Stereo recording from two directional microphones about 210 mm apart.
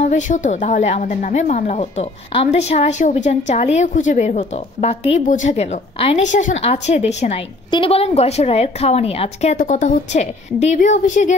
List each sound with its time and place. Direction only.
0.3 s a woman's voice: 35° left (ahead or behind)